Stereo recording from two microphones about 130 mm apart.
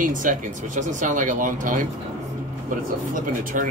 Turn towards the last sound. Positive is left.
turn(degrees=-90)